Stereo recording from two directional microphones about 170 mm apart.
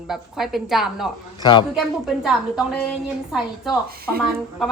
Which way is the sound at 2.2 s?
5° right (ahead or behind).